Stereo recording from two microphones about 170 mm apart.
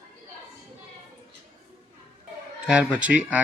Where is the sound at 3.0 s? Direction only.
10° right (ahead or behind).